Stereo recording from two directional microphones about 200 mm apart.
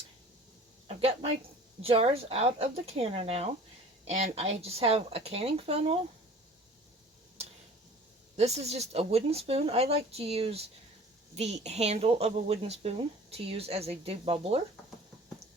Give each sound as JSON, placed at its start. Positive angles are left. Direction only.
{"t": 0.9, "sound": "a sound", "side_deg": -30}
{"t": 1.8, "sound": "speech", "side_deg": -30}
{"t": 8.4, "sound": "speech", "side_deg": -35}